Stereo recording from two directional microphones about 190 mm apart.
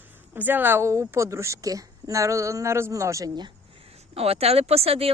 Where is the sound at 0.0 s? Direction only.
10° right (ahead or behind).